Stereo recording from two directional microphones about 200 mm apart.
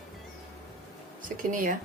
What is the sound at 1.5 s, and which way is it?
Speech, 40° right (ahead or behind).